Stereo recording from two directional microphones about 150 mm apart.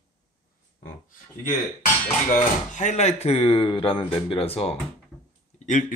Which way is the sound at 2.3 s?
55° left (ahead or behind).